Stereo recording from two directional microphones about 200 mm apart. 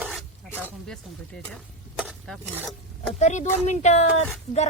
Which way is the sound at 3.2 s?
35° left (ahead or behind).